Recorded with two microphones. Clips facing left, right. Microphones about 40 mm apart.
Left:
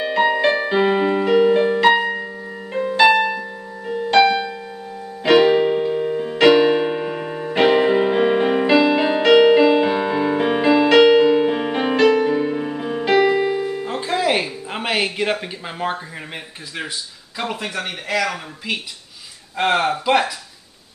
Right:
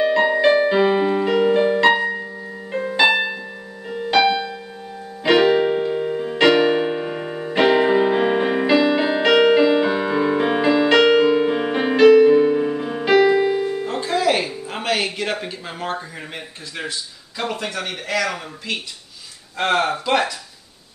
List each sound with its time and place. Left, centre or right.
0.0 s music: centre
0.4 s piano: centre
2.0 s music: left
2.7 s music: centre
3.0 s music: centre
5.2 s keyboard: centre
13.8 s music: centre
17.4 s speech: centre